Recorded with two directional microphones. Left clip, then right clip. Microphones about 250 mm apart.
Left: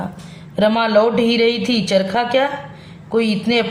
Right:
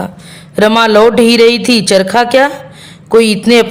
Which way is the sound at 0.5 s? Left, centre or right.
Right.